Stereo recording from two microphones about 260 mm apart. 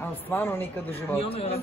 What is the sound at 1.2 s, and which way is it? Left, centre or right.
Speech, left.